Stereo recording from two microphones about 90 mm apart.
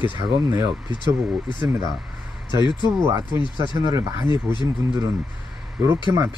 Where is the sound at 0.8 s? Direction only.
55° left (ahead or behind).